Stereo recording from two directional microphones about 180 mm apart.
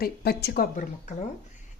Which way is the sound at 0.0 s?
60° left (ahead or behind).